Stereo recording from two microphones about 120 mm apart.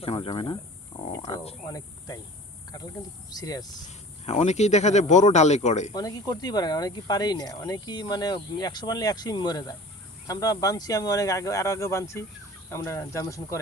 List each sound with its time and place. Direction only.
0.0 s speech: 50° left (ahead or behind)
1.6 s speech: 30° left (ahead or behind)
3.8 s speech: 70° left (ahead or behind)
5.9 s speech: 35° left (ahead or behind)